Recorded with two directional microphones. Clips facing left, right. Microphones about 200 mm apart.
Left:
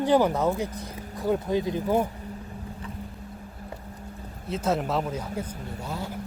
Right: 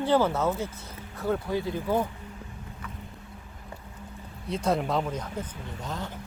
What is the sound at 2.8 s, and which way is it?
Boat, 30° left (ahead or behind).